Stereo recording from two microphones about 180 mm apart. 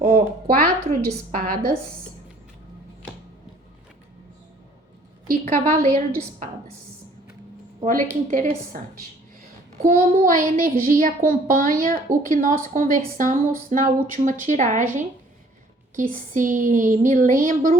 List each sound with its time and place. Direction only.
0.0 s a woman's voice: 45° right (ahead or behind)
5.3 s a child's voice: 45° right (ahead or behind)
8.3 s a child's voice: 45° right (ahead or behind)
16.0 s a child's voice: 45° right (ahead or behind)